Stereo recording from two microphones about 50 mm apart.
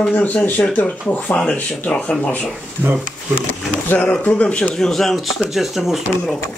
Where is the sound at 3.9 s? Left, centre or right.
Left.